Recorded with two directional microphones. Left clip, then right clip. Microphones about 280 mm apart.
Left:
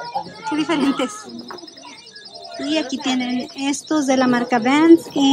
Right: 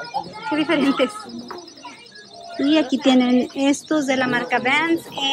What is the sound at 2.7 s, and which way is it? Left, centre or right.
Speech, centre.